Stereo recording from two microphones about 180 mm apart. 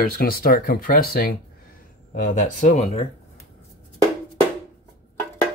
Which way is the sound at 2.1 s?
45° left (ahead or behind).